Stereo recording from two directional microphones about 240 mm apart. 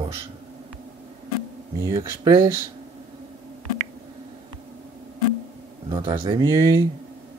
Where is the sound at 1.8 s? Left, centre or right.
Centre.